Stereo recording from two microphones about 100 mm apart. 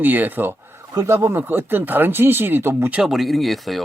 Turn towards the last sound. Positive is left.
turn(degrees=0)  # may be behind; listen again after turning